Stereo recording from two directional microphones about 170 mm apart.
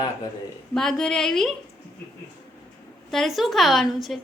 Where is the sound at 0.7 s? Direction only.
5° left (ahead or behind).